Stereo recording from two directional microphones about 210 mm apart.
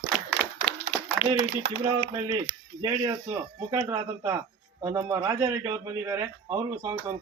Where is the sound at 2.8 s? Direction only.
20° right (ahead or behind).